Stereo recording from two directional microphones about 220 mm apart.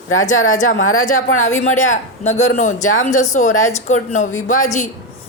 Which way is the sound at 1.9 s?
30° left (ahead or behind).